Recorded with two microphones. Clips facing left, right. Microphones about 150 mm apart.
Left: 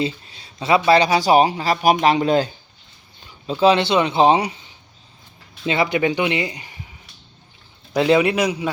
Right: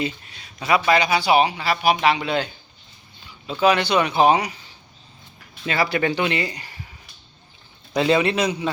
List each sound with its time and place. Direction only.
0.0 s a sound: 30° left (ahead or behind)
0.9 s speech: 35° left (ahead or behind)
3.6 s speech: 25° left (ahead or behind)
7.9 s a man's voice: 10° left (ahead or behind)